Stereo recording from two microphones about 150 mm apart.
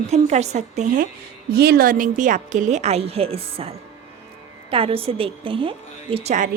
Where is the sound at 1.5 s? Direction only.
90° right; by 6.4 s 45° right (ahead or behind).